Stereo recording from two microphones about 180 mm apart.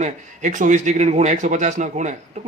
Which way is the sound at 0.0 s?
45° right (ahead or behind).